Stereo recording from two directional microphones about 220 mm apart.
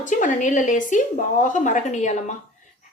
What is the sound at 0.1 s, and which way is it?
A woman's voice, 35° left (ahead or behind).